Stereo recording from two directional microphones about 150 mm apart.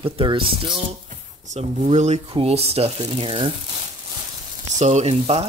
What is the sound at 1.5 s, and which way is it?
Speech, 50° right (ahead or behind).